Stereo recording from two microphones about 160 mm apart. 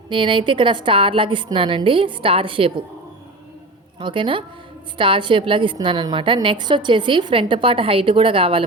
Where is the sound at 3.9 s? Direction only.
30° right (ahead or behind).